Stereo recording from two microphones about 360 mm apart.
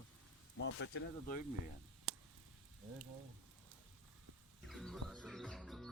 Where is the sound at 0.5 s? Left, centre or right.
Left.